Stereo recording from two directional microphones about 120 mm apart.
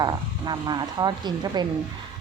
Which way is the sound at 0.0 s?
35° right (ahead or behind).